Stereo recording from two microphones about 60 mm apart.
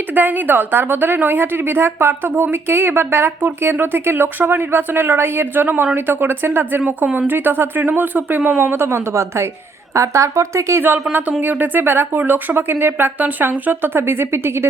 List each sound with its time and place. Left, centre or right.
0.1 s a woman's voice: right
11.3 s a woman's voice: right